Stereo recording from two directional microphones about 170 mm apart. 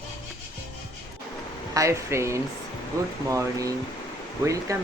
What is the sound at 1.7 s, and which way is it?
Speech, 20° right (ahead or behind).